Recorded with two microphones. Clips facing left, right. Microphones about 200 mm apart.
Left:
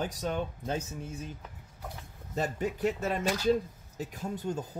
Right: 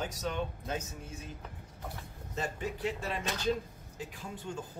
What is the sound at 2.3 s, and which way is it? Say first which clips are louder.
Speech: left 5 dB; 40° left (ahead or behind).